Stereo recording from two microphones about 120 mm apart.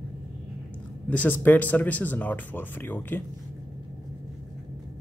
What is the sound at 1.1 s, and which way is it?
Speech, 15° left (ahead or behind).